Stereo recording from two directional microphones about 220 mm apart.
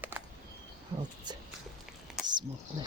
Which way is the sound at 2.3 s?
20° right (ahead or behind).